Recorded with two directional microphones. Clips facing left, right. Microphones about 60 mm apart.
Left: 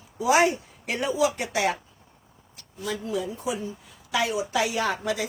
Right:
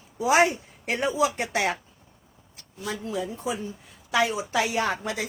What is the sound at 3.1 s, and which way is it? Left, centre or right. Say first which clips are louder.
Speech: even; right.